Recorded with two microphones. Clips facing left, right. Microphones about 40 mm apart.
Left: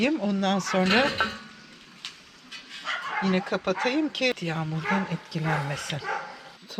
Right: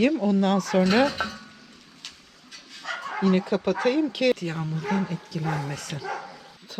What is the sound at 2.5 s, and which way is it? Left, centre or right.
Dog, left.